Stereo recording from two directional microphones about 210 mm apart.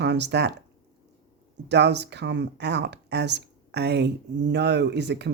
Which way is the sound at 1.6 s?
55° right (ahead or behind).